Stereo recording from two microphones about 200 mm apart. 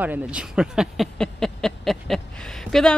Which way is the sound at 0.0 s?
10° right (ahead or behind).